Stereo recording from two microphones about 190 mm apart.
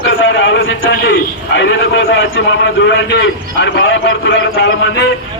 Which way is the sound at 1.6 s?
70° left (ahead or behind).